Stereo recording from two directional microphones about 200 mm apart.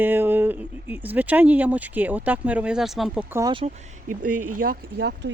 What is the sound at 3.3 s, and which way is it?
Speech, 20° right (ahead or behind).